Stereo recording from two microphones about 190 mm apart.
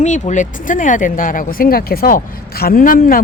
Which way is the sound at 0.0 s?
40° left (ahead or behind).